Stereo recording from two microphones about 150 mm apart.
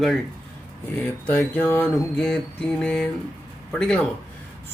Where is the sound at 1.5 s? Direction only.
10° left (ahead or behind).